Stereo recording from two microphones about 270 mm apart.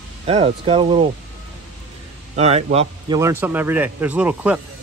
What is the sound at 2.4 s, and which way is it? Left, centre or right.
Speech, right.